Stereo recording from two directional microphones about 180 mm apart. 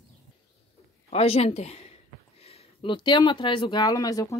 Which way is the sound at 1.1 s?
35° left (ahead or behind).